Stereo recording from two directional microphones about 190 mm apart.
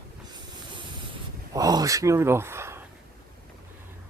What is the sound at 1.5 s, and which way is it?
Speech, 20° right (ahead or behind).